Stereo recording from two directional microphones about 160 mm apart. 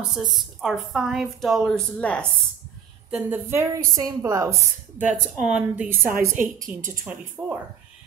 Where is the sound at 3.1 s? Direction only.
10° right (ahead or behind).